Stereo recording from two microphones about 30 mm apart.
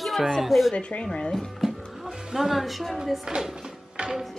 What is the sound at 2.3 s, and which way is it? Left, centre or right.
Speech, centre.